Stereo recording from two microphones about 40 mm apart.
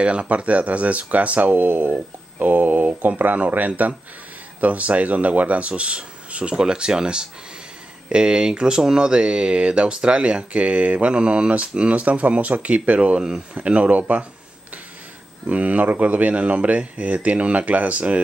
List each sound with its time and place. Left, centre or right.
0.0 s speech: right
1.5 s speech: right
15.4 s speech: right